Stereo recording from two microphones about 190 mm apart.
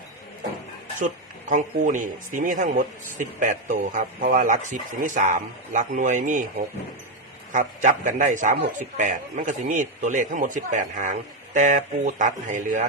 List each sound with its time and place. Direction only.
0.9 s a man's voice: 45° right (ahead or behind)